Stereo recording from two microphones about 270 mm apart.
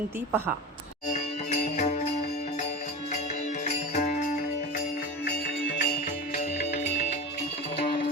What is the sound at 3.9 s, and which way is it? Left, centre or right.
Music, left.